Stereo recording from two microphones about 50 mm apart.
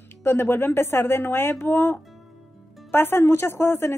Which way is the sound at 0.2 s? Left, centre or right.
Left.